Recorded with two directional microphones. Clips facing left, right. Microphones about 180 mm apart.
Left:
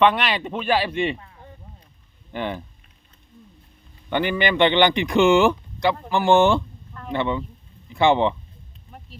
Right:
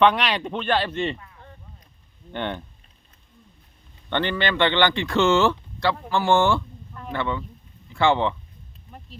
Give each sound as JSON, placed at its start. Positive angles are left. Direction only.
{"t": 0.0, "sound": "speech", "side_deg": 0}
{"t": 2.3, "sound": "speech", "side_deg": 5}
{"t": 4.1, "sound": "speech", "side_deg": 10}